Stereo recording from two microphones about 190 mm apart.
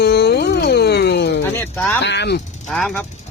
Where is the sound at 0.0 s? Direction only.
60° left (ahead or behind).